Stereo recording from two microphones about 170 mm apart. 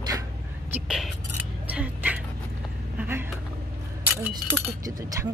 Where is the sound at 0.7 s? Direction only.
5° right (ahead or behind).